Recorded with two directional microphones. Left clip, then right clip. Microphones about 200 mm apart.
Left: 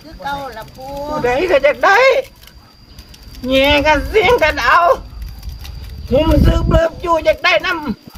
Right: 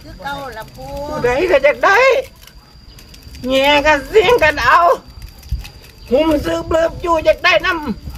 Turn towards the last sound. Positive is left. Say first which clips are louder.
# right 1 dB
turn(degrees=0)  # may be behind; listen again after turning